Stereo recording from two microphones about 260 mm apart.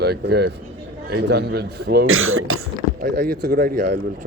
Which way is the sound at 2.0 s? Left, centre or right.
Right.